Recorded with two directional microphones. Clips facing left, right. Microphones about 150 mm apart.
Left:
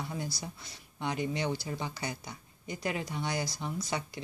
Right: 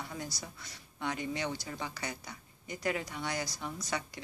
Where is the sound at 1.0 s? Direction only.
25° left (ahead or behind).